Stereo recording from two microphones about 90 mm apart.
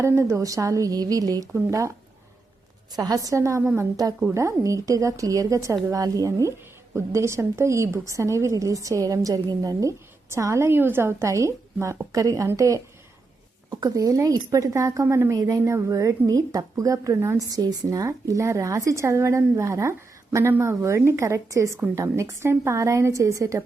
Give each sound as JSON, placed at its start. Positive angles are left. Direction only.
{"t": 0.2, "sound": "a woman's voice", "side_deg": -35}
{"t": 1.5, "sound": "a woman's voice", "side_deg": -30}
{"t": 2.9, "sound": "a woman's voice", "side_deg": -45}
{"t": 15.4, "sound": "a woman's voice", "side_deg": -40}